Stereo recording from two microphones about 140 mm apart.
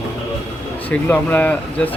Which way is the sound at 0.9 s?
10° left (ahead or behind).